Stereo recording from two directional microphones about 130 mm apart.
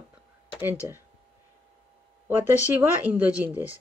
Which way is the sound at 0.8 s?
20° right (ahead or behind).